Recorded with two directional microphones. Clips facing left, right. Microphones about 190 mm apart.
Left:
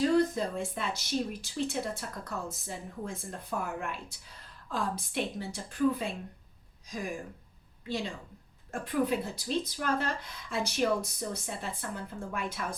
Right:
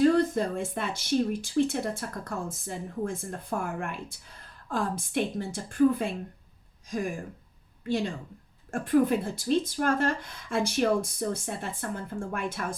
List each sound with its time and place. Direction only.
0.0 s speech: 55° right (ahead or behind)
7.9 s speech: 50° right (ahead or behind)